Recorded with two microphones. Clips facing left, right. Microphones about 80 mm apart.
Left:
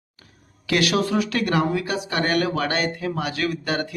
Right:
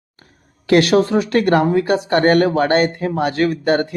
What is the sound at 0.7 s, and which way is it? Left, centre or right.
Speech, right.